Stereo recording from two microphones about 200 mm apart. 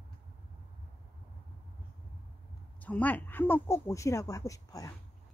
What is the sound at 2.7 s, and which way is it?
Speech, 10° left (ahead or behind).